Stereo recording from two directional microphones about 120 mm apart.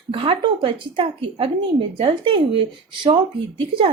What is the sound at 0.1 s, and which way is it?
Speech, 45° right (ahead or behind).